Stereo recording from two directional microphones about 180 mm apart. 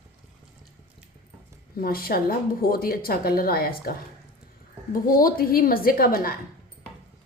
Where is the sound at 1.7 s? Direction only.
55° left (ahead or behind).